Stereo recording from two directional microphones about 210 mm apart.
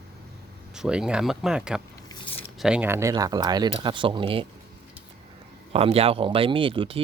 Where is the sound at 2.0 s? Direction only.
20° left (ahead or behind).